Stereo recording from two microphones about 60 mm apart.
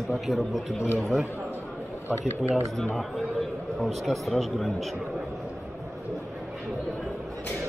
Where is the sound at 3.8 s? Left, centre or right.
Centre.